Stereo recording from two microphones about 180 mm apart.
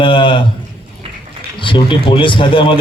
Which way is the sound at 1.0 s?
30° right (ahead or behind).